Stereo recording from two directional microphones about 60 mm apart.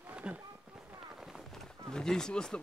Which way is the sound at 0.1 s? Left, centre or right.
Centre.